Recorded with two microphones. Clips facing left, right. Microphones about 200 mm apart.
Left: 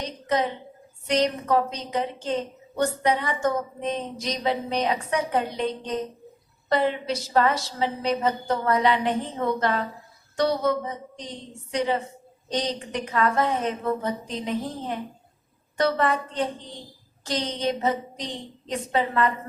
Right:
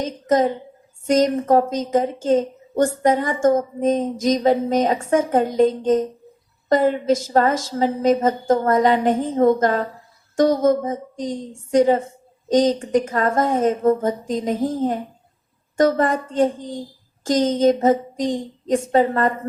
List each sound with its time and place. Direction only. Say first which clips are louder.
0.0 s a woman's voice: right 7 dB; 45° right (ahead or behind)